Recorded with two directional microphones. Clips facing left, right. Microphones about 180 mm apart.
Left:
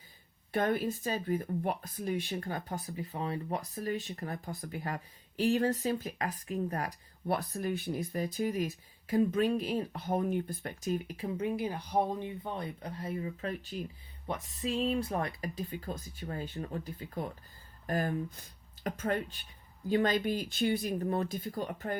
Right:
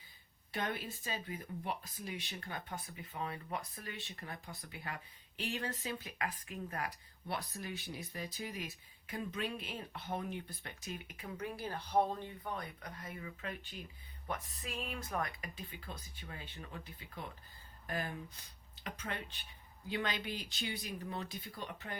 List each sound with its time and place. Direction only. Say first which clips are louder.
0.5 s speech: left 10 dB; 50° left (ahead or behind); by 11.4 s 35° left (ahead or behind)
11.4 s speech: left 7 dB; 15° left (ahead or behind)
12.4 s speech: left 5 dB; 25° left (ahead or behind)
14.3 s speech: left 8 dB; 25° left (ahead or behind); by 21.9 s 45° left (ahead or behind)